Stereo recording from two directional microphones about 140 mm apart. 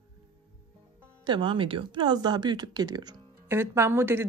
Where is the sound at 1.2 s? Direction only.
35° right (ahead or behind).